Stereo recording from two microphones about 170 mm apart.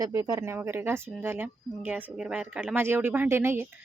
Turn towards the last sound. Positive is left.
turn(degrees=-15)  # may be behind; listen again after turning